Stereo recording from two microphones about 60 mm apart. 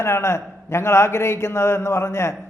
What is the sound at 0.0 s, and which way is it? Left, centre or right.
A man's voice, left.